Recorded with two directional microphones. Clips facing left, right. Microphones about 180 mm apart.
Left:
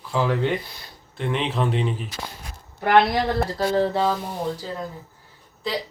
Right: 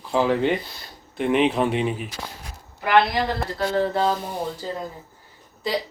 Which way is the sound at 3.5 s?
35° left (ahead or behind).